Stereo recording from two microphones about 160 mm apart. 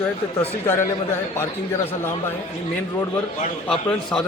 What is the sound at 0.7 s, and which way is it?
A man's voice, 15° left (ahead or behind).